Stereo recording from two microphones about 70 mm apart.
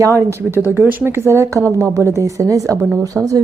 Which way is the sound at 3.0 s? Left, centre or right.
Right.